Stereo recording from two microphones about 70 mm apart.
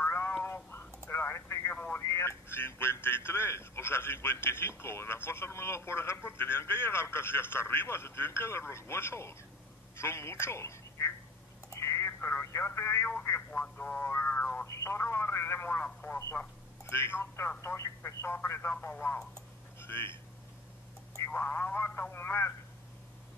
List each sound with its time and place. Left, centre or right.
0.0 s a sound: left
0.4 s telephone: left
2.0 s speech: left
11.7 s telephone: left
13.7 s a sound: left
14.7 s speech: left
15.8 s speech: left
16.2 s speech: left
21.2 s speech: left